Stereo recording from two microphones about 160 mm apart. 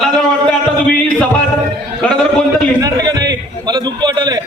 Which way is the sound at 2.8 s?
20° right (ahead or behind).